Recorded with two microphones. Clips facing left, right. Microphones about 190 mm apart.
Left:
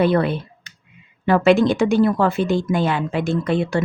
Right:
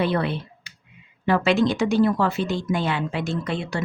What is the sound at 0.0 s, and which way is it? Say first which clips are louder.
A woman's voice: left 6 dB; 50° left (ahead or behind).